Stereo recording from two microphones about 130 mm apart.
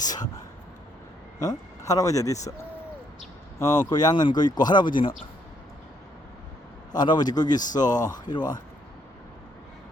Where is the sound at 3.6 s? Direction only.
30° left (ahead or behind).